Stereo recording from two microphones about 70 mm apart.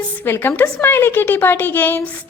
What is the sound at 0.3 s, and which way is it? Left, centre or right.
A woman's voice, left.